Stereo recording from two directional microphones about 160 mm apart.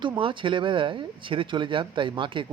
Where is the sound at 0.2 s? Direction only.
35° right (ahead or behind).